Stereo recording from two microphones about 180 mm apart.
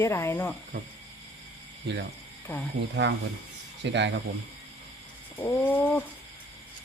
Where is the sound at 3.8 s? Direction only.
80° right.